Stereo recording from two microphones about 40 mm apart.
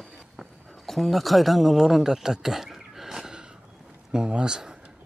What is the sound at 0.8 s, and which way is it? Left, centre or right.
Speech, centre.